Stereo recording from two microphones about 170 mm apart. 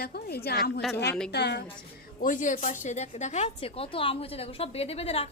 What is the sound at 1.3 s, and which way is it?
Speech, 85° left.